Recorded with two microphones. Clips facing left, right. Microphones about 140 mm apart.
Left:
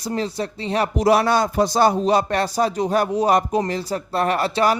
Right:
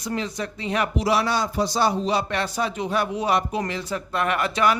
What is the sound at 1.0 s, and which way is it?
A man's voice, 50° left (ahead or behind).